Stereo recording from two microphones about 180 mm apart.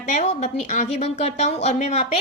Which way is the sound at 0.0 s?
40° left (ahead or behind).